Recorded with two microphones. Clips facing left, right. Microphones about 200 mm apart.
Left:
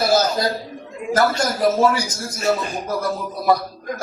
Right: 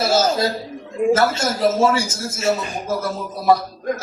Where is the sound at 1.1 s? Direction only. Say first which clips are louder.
Left 3 dB; 25° right (ahead or behind).